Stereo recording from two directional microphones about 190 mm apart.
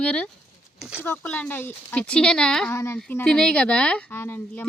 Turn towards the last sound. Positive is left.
turn(degrees=10)  # may be behind; listen again after turning